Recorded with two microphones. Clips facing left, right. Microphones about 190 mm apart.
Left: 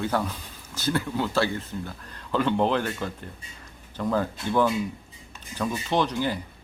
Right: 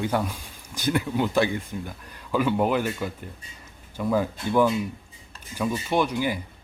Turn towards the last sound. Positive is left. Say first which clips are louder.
# right 1 dB
turn(degrees=-10)  # may be behind; listen again after turning